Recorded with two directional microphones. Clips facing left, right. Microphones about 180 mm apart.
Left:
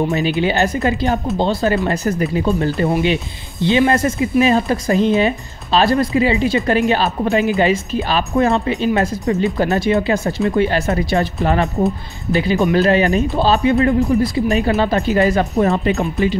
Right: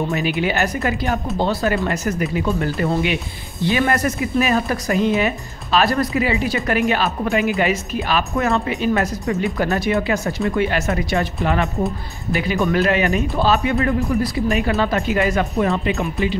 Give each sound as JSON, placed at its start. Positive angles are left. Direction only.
{"t": 0.1, "sound": "speech", "side_deg": 30}